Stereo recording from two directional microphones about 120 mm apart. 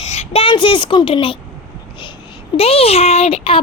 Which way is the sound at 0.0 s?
65° left (ahead or behind).